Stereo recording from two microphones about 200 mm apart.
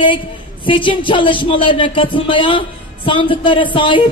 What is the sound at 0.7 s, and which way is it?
Speech, 25° left (ahead or behind).